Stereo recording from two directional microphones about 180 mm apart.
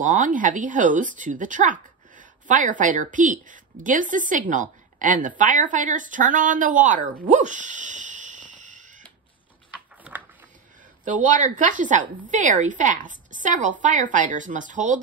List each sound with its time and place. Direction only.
0.0 s speech: 45° right (ahead or behind)
7.2 s a sound: 45° right (ahead or behind)
11.1 s speech: 45° right (ahead or behind)